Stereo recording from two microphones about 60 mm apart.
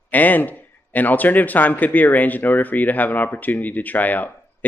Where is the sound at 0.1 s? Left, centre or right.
Left.